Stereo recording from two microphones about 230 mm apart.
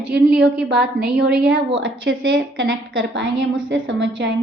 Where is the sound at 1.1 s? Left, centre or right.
Right.